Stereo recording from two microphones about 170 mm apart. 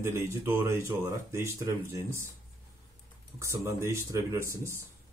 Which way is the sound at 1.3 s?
15° right (ahead or behind).